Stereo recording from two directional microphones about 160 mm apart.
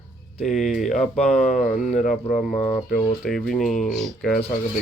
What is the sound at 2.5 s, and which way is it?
Speech, 10° left (ahead or behind).